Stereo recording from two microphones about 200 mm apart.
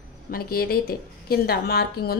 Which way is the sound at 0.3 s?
50° left (ahead or behind).